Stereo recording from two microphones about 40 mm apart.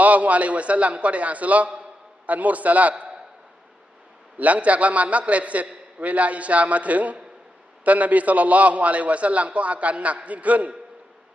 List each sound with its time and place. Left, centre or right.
0.0 s a man's voice: right
4.4 s a man's voice: right